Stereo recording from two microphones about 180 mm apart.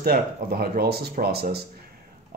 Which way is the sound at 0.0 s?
55° right (ahead or behind).